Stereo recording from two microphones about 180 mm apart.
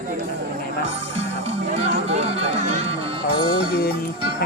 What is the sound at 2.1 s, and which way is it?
Music, 35° right (ahead or behind).